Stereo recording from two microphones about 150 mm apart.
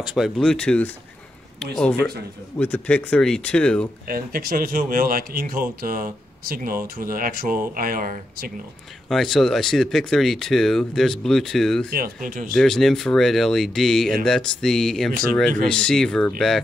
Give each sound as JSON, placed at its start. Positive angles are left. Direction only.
{"t": 0.0, "sound": "speech", "side_deg": 0}
{"t": 4.1, "sound": "speech", "side_deg": -75}
{"t": 9.1, "sound": "speech", "side_deg": 5}
{"t": 12.0, "sound": "speech", "side_deg": -70}
{"t": 12.5, "sound": "speech", "side_deg": 5}